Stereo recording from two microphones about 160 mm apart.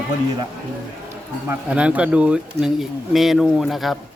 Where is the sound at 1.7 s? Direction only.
10° right (ahead or behind).